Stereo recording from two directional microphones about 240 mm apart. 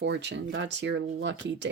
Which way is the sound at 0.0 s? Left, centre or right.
Right.